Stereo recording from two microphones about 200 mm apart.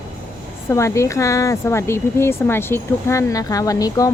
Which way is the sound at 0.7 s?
15° left (ahead or behind).